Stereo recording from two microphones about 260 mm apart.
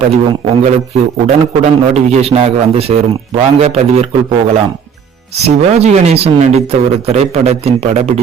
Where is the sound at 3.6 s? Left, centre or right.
Right.